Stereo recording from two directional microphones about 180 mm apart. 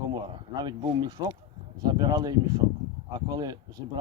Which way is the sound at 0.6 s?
25° right (ahead or behind).